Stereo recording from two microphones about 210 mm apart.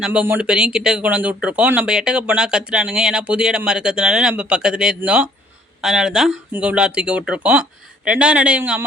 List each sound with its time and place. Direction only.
0.0 s speech: 5° right (ahead or behind)